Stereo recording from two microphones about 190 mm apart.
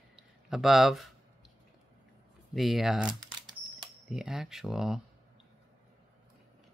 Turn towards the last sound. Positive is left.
turn(degrees=-5)  # may be behind; listen again after turning